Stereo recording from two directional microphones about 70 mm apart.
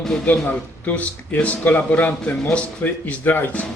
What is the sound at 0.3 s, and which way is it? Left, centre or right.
Speech, left.